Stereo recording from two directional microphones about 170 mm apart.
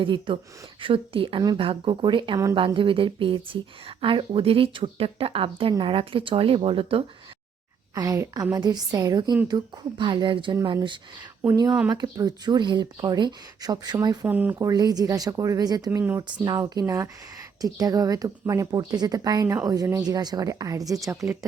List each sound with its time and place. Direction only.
0.0 s speech: 30° right (ahead or behind)
7.9 s speech: 20° right (ahead or behind)
14.3 s speech: 10° right (ahead or behind)
14.7 s speech: 20° right (ahead or behind)